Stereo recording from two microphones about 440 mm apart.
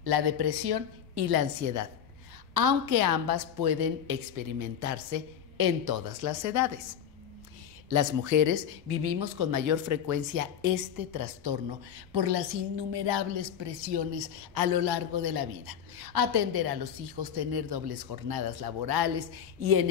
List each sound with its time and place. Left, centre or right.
0.0 s a woman's voice: right
7.9 s a woman's voice: right
12.1 s a woman's voice: right
14.5 s a woman's voice: right